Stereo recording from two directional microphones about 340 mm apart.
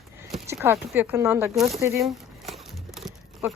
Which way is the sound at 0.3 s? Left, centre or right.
Centre.